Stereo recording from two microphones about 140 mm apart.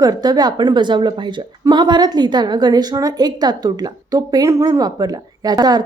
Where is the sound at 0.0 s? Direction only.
30° right (ahead or behind).